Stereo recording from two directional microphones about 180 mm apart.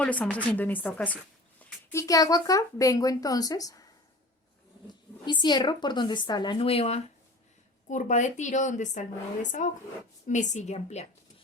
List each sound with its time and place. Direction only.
0.0 s a woman's voice: 10° left (ahead or behind)
5.2 s a woman's voice: 25° left (ahead or behind)